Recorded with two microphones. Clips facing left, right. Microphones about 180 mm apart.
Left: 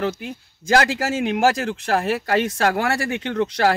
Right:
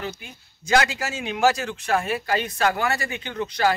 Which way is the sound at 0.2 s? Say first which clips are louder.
Left 12 dB; 80° left.